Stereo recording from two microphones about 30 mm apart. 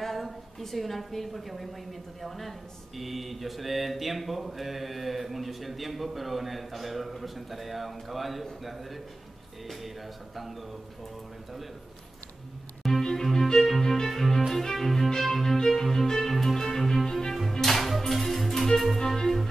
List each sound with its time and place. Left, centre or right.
0.0 s a woman's voice: centre
3.0 s mantra: centre
13.1 s music: centre
14.5 s cello: centre
15.1 s music: centre
18.9 s music: centre